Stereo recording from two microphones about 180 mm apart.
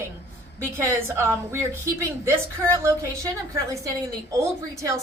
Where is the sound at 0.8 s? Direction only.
15° right (ahead or behind).